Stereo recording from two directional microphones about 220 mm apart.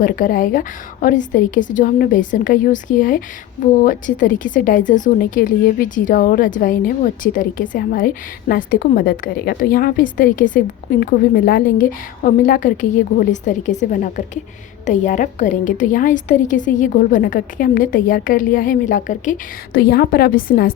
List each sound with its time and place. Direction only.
0.0 s a woman's voice: 40° left (ahead or behind)